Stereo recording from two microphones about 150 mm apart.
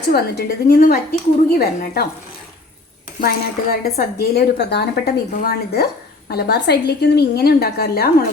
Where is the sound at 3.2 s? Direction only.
90° left.